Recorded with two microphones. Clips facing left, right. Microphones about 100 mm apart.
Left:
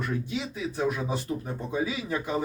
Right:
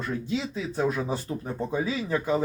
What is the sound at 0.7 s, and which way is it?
Speech, 30° right (ahead or behind).